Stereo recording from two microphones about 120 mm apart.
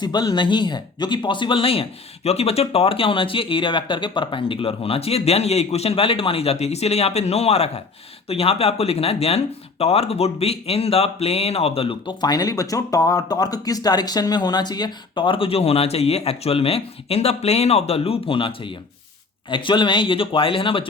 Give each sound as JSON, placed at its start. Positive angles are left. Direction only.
{"t": 0.0, "sound": "speech", "side_deg": 35}